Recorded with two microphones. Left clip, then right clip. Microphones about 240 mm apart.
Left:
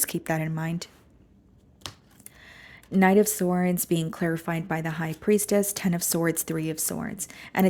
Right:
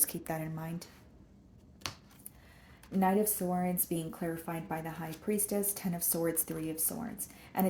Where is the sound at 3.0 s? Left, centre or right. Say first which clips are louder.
Left 9 dB; left.